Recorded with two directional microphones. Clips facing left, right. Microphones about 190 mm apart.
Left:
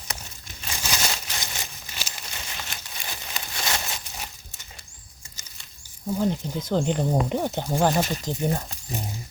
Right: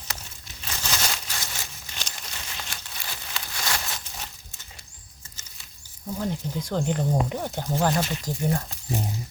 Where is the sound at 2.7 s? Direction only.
20° left (ahead or behind).